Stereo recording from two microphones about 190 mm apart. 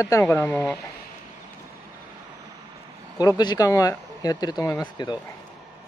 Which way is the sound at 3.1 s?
20° left (ahead or behind).